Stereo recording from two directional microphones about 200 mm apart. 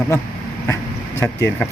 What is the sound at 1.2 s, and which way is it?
Speech, 15° left (ahead or behind).